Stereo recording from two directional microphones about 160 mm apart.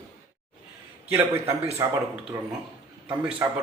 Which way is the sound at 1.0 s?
15° right (ahead or behind).